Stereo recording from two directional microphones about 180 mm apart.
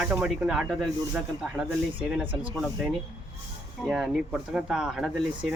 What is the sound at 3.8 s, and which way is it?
Speech, centre (ahead or behind).